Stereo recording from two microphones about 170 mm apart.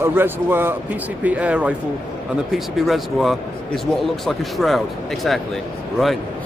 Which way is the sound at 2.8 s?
Centre (ahead or behind).